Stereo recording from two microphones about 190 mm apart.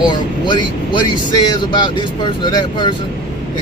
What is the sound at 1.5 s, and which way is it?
Speech, 25° left (ahead or behind).